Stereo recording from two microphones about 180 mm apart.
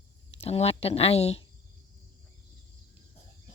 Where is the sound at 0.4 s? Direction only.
35° left (ahead or behind).